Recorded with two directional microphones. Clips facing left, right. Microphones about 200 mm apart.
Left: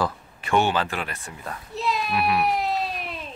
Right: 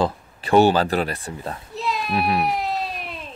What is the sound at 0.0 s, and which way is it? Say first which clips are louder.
Speech: right 4 dB; 35° right (ahead or behind).